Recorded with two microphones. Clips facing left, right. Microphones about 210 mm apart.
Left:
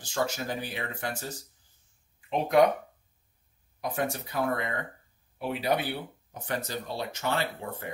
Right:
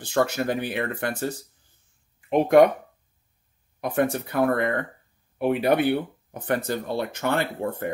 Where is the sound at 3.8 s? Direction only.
55° right (ahead or behind).